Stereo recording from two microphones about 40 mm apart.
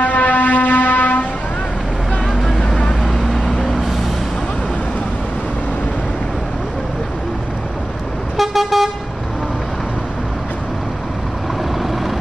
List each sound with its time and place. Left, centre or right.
0.0 s a sound: left
3.0 s vehicle: centre
8.4 s vehicle: centre